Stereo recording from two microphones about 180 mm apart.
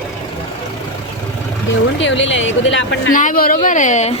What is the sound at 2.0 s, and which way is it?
Speech, 90° left.